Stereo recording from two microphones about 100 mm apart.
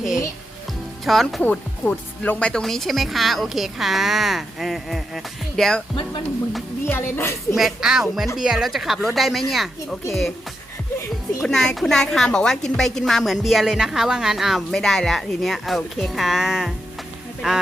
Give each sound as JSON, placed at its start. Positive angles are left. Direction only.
{"t": 1.0, "sound": "a woman's voice", "side_deg": 0}
{"t": 1.4, "sound": "a woman's voice", "side_deg": 15}
{"t": 6.8, "sound": "a woman's voice", "side_deg": 25}
{"t": 7.5, "sound": "a woman's voice", "side_deg": -5}
{"t": 11.4, "sound": "a woman's voice", "side_deg": 5}